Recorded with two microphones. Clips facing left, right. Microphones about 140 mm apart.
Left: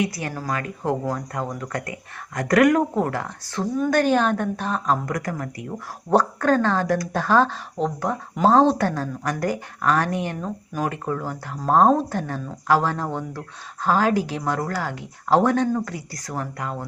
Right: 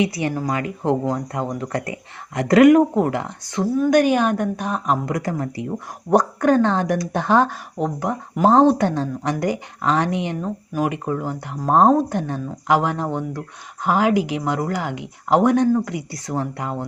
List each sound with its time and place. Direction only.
0.0 s speech: 20° right (ahead or behind)
6.1 s speech: 15° right (ahead or behind)